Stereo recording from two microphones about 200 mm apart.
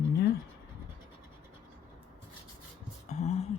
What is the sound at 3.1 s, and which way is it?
Speech, 35° left (ahead or behind).